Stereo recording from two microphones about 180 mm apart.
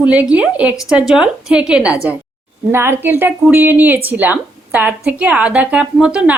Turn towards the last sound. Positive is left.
turn(degrees=-5)  # may be behind; listen again after turning